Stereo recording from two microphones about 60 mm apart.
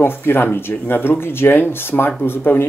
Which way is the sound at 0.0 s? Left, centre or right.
Left.